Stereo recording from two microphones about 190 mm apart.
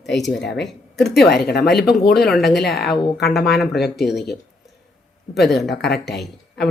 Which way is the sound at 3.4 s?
60° left (ahead or behind).